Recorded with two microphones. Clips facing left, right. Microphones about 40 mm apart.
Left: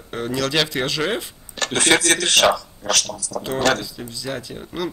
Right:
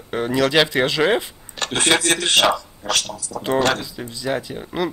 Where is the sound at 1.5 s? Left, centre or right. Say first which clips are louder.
Even; right.